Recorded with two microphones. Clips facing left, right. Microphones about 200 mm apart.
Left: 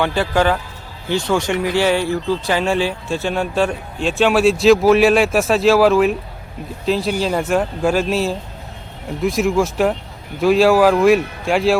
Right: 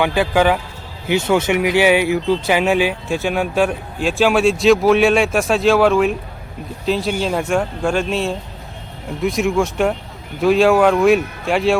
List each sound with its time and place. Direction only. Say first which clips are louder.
0.0 s speech: right 1 dB; 15° right (ahead or behind)
3.7 s a man's voice: right 1 dB; centre (ahead or behind)